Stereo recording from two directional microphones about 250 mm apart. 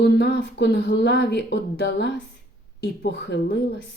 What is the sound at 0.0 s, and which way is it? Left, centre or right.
A woman's voice, left.